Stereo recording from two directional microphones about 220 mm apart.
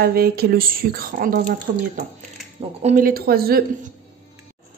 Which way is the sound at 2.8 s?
40° right (ahead or behind).